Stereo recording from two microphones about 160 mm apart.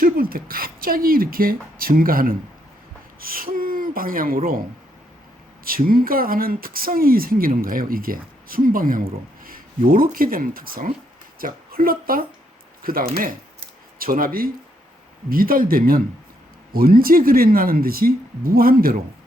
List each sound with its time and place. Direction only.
0.0 s speech: 65° right (ahead or behind)
3.2 s a sound: 65° right (ahead or behind)
5.6 s speech: 65° right (ahead or behind)